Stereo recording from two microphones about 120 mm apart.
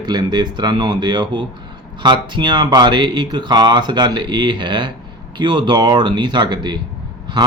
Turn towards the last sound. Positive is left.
turn(degrees=-40)  # may be behind; listen again after turning